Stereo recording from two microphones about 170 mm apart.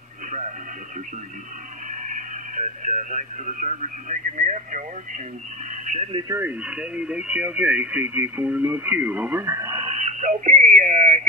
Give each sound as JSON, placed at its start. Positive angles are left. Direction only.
{"t": 1.9, "sound": "speech", "side_deg": -45}
{"t": 6.1, "sound": "speech", "side_deg": -20}
{"t": 6.6, "sound": "speech", "side_deg": -5}
{"t": 9.7, "sound": "a sound", "side_deg": -35}
{"t": 10.8, "sound": "speech", "side_deg": -50}